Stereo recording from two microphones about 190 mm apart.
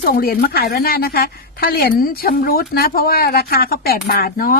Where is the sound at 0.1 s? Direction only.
50° left (ahead or behind).